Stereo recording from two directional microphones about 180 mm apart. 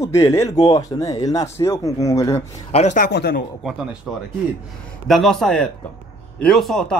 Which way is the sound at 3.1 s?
65° left (ahead or behind).